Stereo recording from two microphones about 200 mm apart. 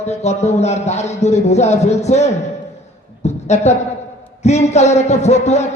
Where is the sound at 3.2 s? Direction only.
35° left (ahead or behind).